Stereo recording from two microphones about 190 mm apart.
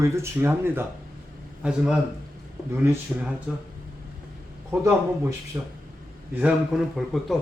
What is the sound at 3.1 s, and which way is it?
Speech, 5° right (ahead or behind).